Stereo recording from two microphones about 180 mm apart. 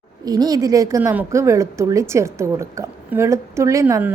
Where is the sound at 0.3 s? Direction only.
20° right (ahead or behind).